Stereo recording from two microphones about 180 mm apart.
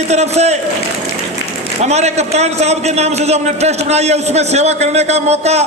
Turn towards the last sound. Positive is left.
turn(degrees=-35)  # may be behind; listen again after turning